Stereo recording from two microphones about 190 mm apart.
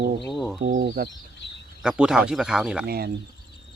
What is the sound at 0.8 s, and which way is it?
Speech, 75° right (ahead or behind).